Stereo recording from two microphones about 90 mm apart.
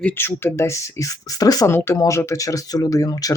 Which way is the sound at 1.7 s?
25° left (ahead or behind).